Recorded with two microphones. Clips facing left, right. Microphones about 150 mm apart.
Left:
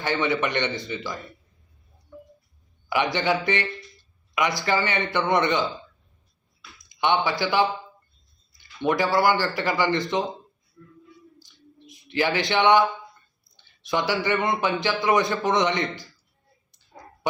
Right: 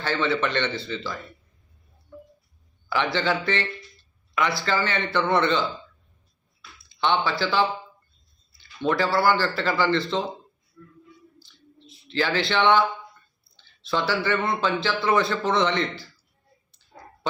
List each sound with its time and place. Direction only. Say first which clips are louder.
0.0 s a man's voice: even; 15° left (ahead or behind)
2.9 s a man's voice: left 1 dB; 15° left (ahead or behind)
6.8 s a man's voice: left 1 dB; 15° left (ahead or behind)
11.3 s a sound: left 1 dB; 15° left (ahead or behind)
13.6 s a man's voice: left 1 dB; 15° left (ahead or behind)